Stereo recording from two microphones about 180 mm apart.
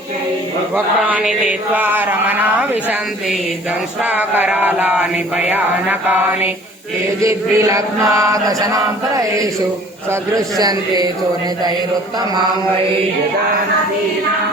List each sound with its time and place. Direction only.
1.0 s male singing: 5° right (ahead or behind)
4.0 s male singing: 10° right (ahead or behind)
7.2 s chant: 20° right (ahead or behind)